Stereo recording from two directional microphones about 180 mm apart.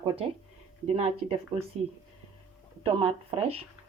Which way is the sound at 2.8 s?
30° right (ahead or behind).